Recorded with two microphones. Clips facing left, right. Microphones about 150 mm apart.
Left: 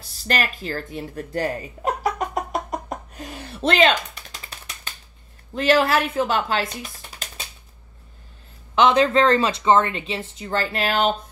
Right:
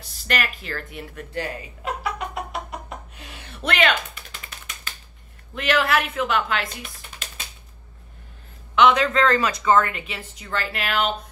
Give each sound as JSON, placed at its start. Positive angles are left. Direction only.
{"t": 0.3, "sound": "chuckle", "side_deg": 35}
{"t": 5.5, "sound": "speech", "side_deg": 35}
{"t": 8.7, "sound": "speech", "side_deg": 30}